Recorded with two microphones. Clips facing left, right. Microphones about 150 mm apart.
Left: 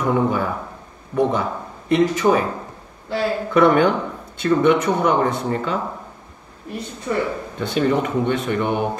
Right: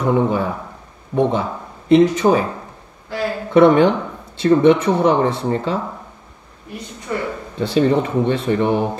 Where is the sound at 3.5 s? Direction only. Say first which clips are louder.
Right 4 dB; 30° right (ahead or behind).